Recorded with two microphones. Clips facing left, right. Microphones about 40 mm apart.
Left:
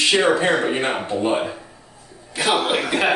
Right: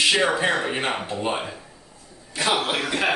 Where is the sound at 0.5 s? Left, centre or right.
Centre.